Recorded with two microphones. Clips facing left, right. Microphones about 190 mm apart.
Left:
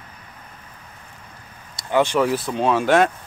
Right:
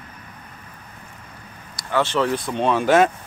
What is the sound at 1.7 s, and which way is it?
Speech, 15° left (ahead or behind).